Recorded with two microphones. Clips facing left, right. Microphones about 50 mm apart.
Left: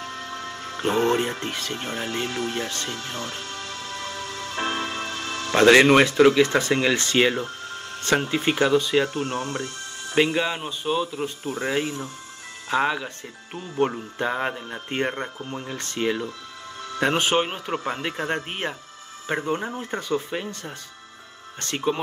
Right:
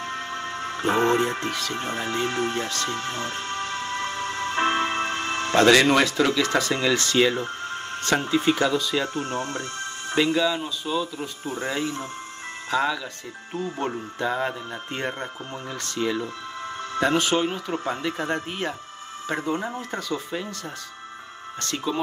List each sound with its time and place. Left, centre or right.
0.0 s music: right
1.4 s speech: left
1.8 s speech: right
2.9 s music: right
5.5 s speech: left
7.4 s music: right
8.0 s speech: left
9.6 s music: right
10.1 s speech: left
21.5 s speech: left